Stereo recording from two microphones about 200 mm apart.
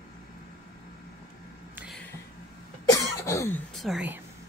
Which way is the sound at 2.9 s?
15° left (ahead or behind).